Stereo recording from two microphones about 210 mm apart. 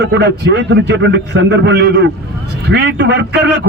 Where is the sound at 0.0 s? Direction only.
55° right (ahead or behind).